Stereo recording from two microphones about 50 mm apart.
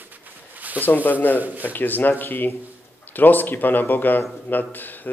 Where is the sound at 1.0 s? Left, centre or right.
Left.